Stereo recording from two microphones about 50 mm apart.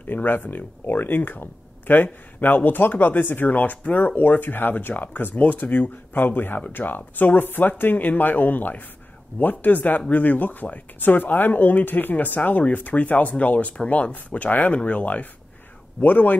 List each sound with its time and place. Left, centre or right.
0.0 s speech: left